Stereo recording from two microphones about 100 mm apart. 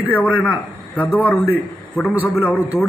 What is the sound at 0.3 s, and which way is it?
A man's voice, 15° left (ahead or behind).